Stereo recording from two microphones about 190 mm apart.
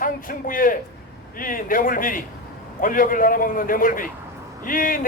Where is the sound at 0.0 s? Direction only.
45° left (ahead or behind).